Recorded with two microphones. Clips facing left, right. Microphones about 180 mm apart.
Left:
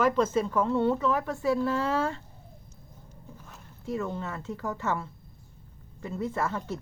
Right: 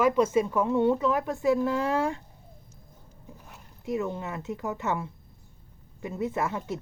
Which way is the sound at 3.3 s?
15° right (ahead or behind).